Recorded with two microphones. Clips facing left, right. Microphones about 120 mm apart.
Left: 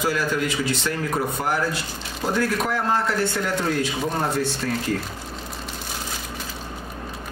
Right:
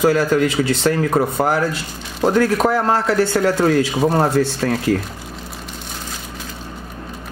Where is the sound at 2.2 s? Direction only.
70° right (ahead or behind).